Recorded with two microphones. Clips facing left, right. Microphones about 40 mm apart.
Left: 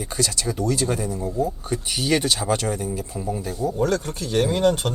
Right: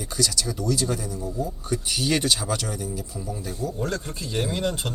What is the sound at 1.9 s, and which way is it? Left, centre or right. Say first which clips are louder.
Speech: left 2 dB; left.